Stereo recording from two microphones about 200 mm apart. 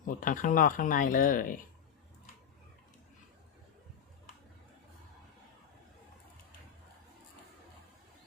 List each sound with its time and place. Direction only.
0.0 s speech: 40° left (ahead or behind)